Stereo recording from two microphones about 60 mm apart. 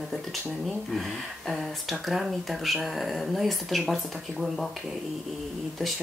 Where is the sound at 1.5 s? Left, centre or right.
Centre.